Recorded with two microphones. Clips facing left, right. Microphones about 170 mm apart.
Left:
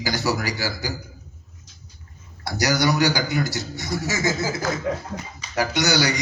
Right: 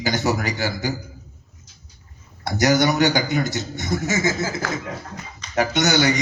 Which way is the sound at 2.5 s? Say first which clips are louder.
Right 3 dB; 20° right (ahead or behind).